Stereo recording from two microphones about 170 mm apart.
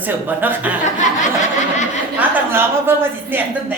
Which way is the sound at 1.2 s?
45° left (ahead or behind).